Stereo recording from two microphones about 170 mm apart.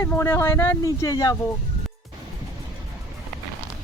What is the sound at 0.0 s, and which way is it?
Speech, 15° left (ahead or behind).